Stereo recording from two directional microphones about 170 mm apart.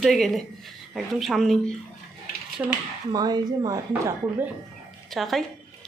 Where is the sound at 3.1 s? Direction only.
25° right (ahead or behind).